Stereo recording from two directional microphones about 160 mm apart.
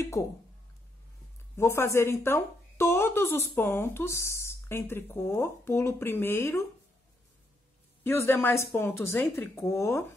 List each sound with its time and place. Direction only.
0.0 s speech: 20° left (ahead or behind)
1.6 s a woman's voice: 15° left (ahead or behind)
8.0 s a woman's voice: 15° left (ahead or behind)